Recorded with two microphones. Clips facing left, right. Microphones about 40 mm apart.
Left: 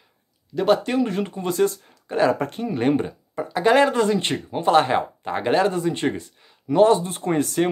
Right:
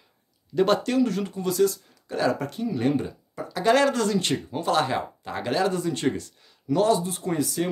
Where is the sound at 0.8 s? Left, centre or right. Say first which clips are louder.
Left 1 dB; left.